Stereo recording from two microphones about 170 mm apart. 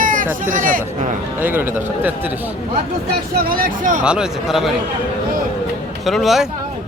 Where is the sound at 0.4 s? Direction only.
50° right (ahead or behind).